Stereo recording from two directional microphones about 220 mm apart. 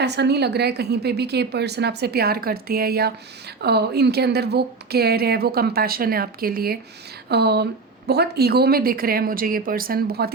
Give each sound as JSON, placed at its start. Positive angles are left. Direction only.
{"t": 0.0, "sound": "speech", "side_deg": -50}